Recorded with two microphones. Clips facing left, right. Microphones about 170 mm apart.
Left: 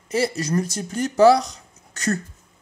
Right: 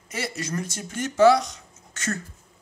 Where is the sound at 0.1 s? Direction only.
35° left (ahead or behind).